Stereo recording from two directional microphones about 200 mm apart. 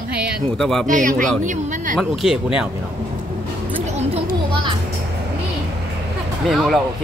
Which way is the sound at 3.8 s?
35° right (ahead or behind).